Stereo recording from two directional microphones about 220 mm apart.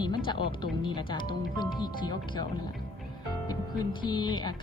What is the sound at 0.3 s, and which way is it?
Speech, 20° left (ahead or behind).